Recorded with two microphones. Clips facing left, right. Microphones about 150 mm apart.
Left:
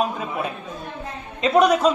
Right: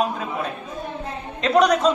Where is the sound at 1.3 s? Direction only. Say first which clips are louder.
Left 1 dB; 5° left (ahead or behind).